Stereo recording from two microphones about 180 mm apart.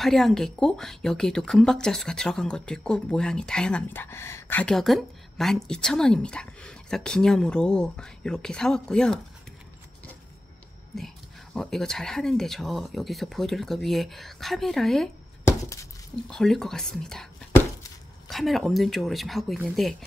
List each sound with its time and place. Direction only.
0.0 s speech: centre (ahead or behind)
11.5 s speech: centre (ahead or behind)
15.4 s a sound: 15° left (ahead or behind)
16.3 s speech: 5° left (ahead or behind)